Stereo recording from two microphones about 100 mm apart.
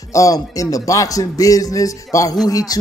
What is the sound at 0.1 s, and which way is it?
Speech, 35° left (ahead or behind).